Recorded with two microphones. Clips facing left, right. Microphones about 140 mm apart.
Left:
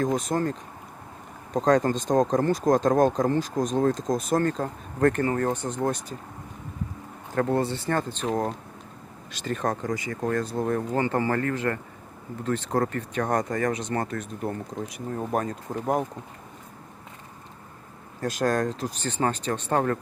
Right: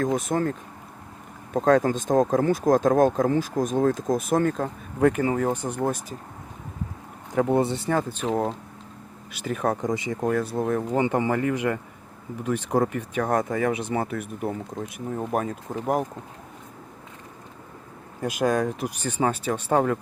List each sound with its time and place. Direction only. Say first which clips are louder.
0.3 s speech: right 1 dB; centre (ahead or behind)
1.5 s speech: right 2 dB; 5° right (ahead or behind)
7.3 s speech: right 3 dB; 20° right (ahead or behind)
7.9 s speech: right 2 dB; 10° right (ahead or behind)
9.8 s speech: right 3 dB; 20° right (ahead or behind)
10.2 s speech: right 1 dB; 5° right (ahead or behind)
10.9 s speech: right 3 dB; 15° right (ahead or behind)
18.2 s speech: right 1 dB; 10° right (ahead or behind)